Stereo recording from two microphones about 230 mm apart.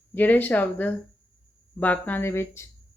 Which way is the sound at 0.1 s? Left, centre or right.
Centre.